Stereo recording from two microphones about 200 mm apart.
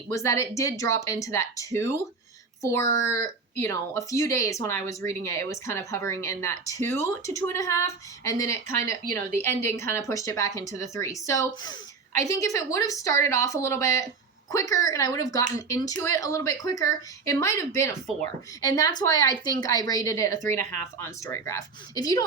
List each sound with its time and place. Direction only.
0.1 s a woman's voice: 15° left (ahead or behind)